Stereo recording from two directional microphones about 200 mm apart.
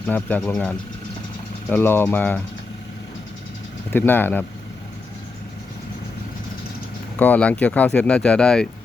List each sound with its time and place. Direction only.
0.0 s speech: 10° left (ahead or behind)
3.9 s speech: 10° left (ahead or behind)
7.2 s speech: 5° left (ahead or behind)